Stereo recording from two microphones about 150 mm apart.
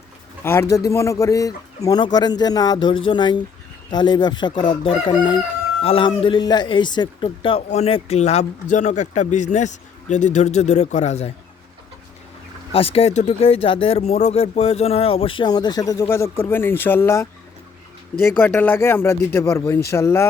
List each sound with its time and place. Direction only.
0.7 s speech: 20° left (ahead or behind); by 11.3 s 45° left (ahead or behind)
12.7 s speech: 40° left (ahead or behind); by 20.2 s 20° left (ahead or behind)